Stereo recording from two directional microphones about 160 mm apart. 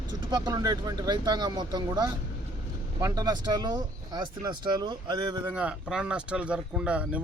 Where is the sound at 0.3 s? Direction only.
25° right (ahead or behind).